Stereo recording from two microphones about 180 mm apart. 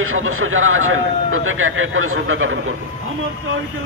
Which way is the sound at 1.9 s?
90° right.